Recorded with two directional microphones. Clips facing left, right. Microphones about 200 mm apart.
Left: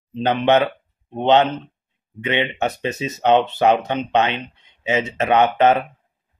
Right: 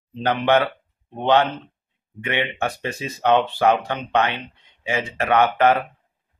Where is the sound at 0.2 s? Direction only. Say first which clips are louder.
Left 2 dB; 20° left (ahead or behind).